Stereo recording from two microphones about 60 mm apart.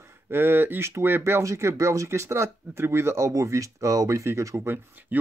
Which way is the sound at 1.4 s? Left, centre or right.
Right.